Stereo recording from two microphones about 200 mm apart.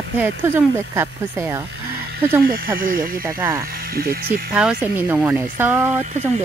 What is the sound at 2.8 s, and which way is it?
Speech, 45° right (ahead or behind).